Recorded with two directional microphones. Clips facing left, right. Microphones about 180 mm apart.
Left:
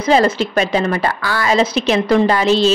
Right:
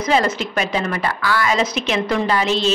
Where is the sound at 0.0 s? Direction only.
35° left (ahead or behind).